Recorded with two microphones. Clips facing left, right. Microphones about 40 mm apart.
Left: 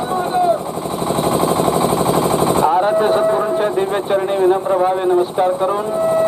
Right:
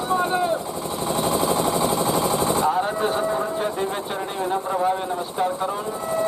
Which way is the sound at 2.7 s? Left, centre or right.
Left.